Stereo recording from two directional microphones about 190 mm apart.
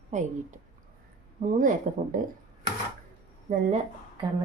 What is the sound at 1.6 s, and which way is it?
Speech, 45° right (ahead or behind).